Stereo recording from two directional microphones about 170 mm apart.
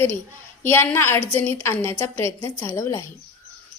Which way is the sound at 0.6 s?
10° left (ahead or behind).